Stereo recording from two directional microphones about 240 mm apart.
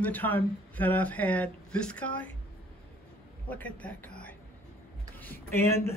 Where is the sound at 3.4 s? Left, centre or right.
Centre.